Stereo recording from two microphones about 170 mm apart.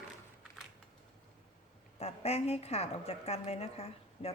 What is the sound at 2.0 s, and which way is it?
A woman's voice, 35° left (ahead or behind).